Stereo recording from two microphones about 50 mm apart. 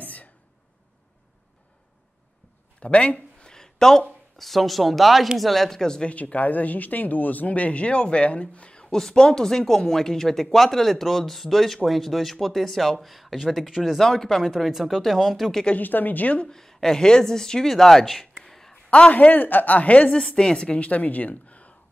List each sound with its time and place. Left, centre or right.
0.0 s a sound: left
2.8 s a sound: left
4.4 s speech: centre
6.0 s speech: left; by 14.0 s centre
14.0 s speech: centre
15.7 s a woman's voice: left
16.4 s a woman's voice: centre
18.9 s speech: left
19.1 s a woman's voice: left
20.1 s speech: centre